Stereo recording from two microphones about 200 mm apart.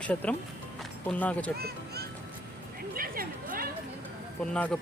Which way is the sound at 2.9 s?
45° right (ahead or behind).